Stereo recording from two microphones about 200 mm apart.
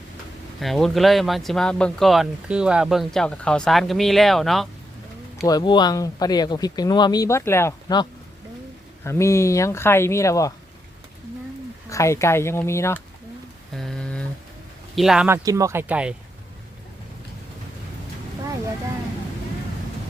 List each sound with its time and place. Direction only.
0.6 s speech: centre (ahead or behind)
5.5 s speech: 20° left (ahead or behind)
9.0 s speech: 15° left (ahead or behind)
11.9 s speech: 15° left (ahead or behind)
13.7 s a sound: 5° left (ahead or behind)
14.9 s speech: centre (ahead or behind)
15.4 s speech: 15° right (ahead or behind)